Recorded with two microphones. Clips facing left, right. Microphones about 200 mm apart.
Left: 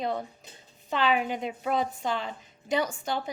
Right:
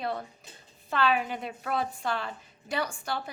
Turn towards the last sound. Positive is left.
turn(degrees=20)  # may be behind; listen again after turning